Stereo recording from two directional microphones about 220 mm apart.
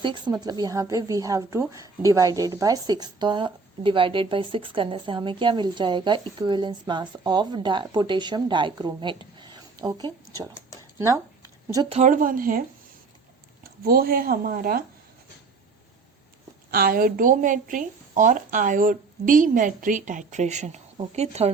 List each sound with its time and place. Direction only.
0.0 s a woman's voice: 20° right (ahead or behind)
11.9 s a woman's voice: 35° right (ahead or behind)
13.8 s a woman's voice: 45° right (ahead or behind)
16.7 s a woman's voice: 40° right (ahead or behind)